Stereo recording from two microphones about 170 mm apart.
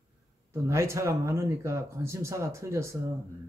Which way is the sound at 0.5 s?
15° right (ahead or behind).